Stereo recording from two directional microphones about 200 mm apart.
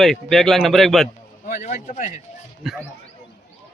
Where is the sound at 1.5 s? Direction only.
40° left (ahead or behind).